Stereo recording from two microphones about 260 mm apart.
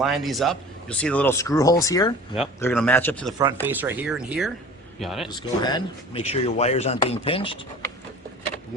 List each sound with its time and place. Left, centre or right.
0.0 s a man's voice: centre
3.7 s speech: centre
5.3 s speech: centre